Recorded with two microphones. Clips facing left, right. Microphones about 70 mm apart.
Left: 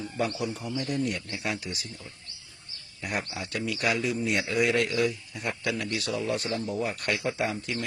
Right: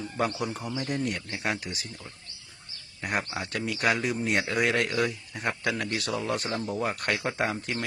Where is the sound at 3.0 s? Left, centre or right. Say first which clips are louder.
Right 2 dB; right.